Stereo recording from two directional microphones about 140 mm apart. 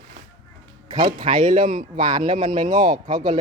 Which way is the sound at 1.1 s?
35° right (ahead or behind).